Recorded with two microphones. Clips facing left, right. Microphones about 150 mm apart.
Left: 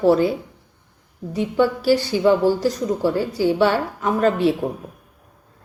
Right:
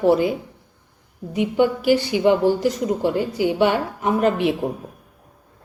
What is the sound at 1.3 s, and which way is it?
A woman's voice, 15° right (ahead or behind).